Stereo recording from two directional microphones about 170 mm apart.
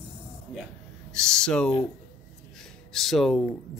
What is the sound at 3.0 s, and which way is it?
Speech, centre (ahead or behind).